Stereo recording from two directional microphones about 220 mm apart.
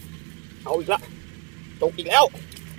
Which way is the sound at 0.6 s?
Centre (ahead or behind).